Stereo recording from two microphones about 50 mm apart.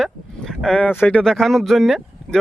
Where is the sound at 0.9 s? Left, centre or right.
Left.